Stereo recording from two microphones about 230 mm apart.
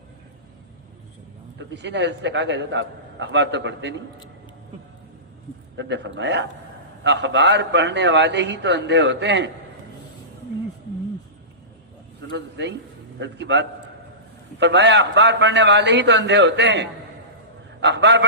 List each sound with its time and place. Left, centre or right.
1.5 s a man's voice: right
5.7 s a man's voice: right
12.3 s a man's voice: right